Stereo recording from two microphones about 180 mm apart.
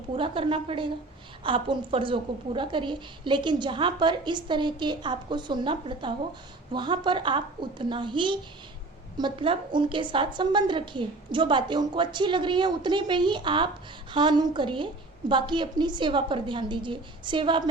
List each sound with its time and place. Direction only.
0.2 s a woman's voice: 30° right (ahead or behind)